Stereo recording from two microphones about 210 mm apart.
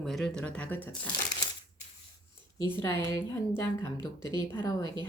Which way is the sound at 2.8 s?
10° left (ahead or behind).